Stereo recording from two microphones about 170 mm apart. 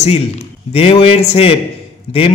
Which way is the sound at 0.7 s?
35° left (ahead or behind).